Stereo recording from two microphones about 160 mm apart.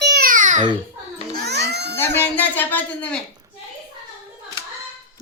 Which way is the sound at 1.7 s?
90° right.